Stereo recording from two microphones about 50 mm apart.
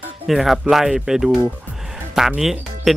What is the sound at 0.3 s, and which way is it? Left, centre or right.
Speech, centre.